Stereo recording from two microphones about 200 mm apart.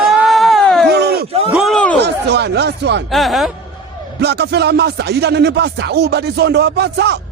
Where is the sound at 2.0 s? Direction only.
55° right (ahead or behind).